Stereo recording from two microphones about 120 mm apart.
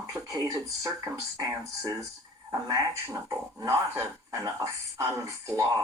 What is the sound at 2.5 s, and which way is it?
Speech, 25° right (ahead or behind).